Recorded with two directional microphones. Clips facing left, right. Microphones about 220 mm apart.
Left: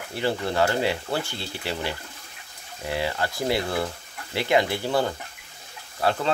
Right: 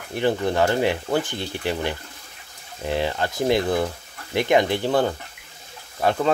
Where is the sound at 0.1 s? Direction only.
15° right (ahead or behind).